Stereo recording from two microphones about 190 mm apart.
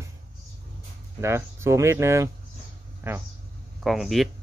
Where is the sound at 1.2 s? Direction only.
15° right (ahead or behind).